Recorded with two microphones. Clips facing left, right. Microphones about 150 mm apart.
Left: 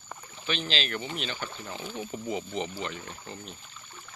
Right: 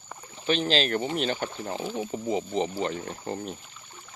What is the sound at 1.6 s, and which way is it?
Speech, 35° right (ahead or behind).